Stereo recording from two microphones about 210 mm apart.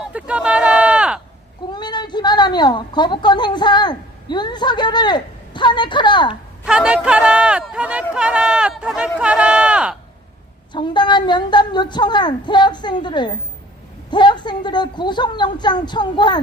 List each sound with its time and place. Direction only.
0.1 s a sound: 5° right (ahead or behind)
1.7 s a woman's voice: 20° left (ahead or behind)
6.7 s speech: 5° right (ahead or behind)
10.7 s a woman's voice: 20° left (ahead or behind)